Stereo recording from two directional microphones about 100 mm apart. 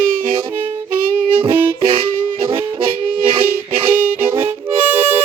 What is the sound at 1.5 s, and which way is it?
Music, 20° right (ahead or behind).